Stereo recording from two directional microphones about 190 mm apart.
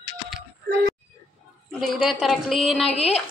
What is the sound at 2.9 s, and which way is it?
Speech, 35° left (ahead or behind).